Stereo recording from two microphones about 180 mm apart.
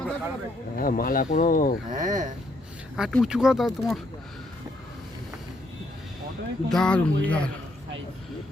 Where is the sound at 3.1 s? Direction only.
Centre (ahead or behind).